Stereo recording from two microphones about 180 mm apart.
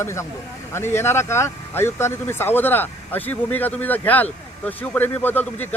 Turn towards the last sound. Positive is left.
turn(degrees=10)  # may be behind; listen again after turning